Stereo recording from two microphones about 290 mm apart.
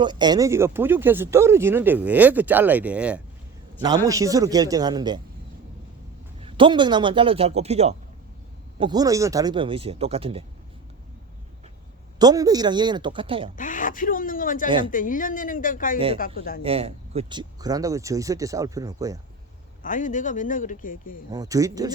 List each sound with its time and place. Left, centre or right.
0.0 s speech: centre
6.4 s a man's voice: centre
12.2 s speech: centre
13.6 s speech: left
16.6 s speech: centre
19.8 s speech: left
21.2 s speech: centre